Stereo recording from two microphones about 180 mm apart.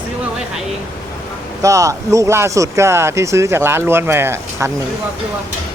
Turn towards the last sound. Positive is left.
turn(degrees=-15)  # may be behind; listen again after turning